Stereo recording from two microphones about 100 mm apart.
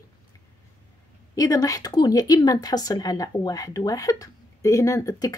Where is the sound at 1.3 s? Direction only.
35° left (ahead or behind).